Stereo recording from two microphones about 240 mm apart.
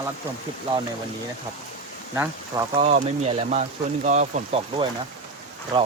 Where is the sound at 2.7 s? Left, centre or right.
Right.